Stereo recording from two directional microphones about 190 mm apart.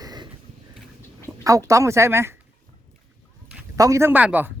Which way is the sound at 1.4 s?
15° right (ahead or behind).